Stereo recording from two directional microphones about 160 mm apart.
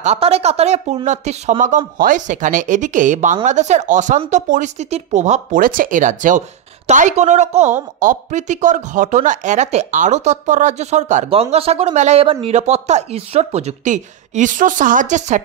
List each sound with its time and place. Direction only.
0.0 s speech: 40° right (ahead or behind)